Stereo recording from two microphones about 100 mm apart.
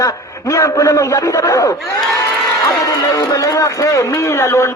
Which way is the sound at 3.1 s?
35° left (ahead or behind).